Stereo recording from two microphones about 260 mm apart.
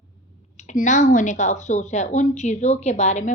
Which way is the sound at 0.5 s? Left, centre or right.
Left.